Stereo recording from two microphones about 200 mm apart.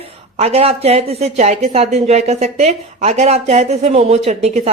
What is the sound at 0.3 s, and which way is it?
Speech, 30° right (ahead or behind).